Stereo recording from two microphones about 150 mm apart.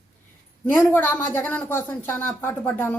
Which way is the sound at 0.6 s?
15° left (ahead or behind).